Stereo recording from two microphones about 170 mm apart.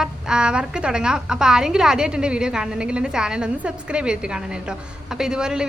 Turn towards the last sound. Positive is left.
turn(degrees=-5)  # may be behind; listen again after turning